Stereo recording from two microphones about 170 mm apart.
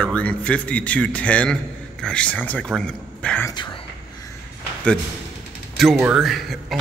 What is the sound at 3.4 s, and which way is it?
Speech, 25° left (ahead or behind).